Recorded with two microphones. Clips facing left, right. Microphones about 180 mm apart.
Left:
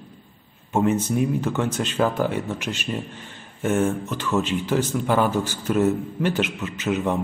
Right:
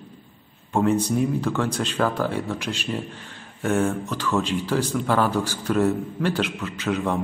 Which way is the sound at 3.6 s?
5° left (ahead or behind).